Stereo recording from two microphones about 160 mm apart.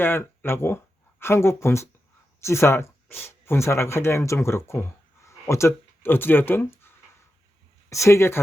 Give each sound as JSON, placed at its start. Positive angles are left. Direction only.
{"t": 0.0, "sound": "speech", "side_deg": 15}